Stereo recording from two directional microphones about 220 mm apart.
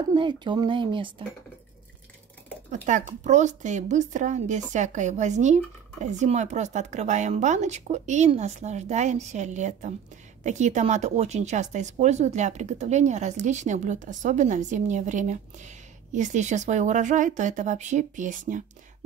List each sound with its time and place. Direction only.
0.1 s speech: 20° right (ahead or behind)
2.7 s speech: 35° right (ahead or behind)